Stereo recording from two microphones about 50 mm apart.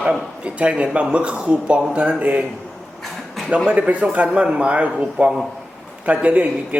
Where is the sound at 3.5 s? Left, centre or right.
Right.